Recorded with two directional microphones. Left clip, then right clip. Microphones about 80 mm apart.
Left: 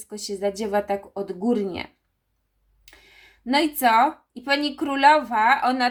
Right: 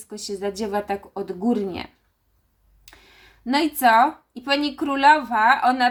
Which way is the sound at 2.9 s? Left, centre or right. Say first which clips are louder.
Right 1 dB; centre.